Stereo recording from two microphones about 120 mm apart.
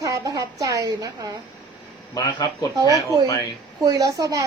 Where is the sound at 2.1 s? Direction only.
30° left (ahead or behind).